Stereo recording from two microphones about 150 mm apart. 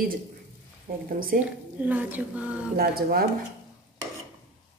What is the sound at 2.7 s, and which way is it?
Speech, 80° right.